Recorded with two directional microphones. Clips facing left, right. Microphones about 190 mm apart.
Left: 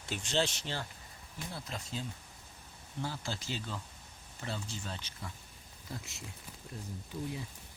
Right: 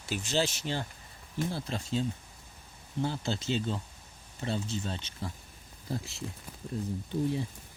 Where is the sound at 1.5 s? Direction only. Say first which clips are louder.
Right 9 dB; 30° right (ahead or behind).